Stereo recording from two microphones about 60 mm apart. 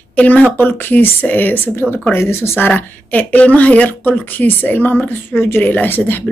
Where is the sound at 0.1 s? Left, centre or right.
Left.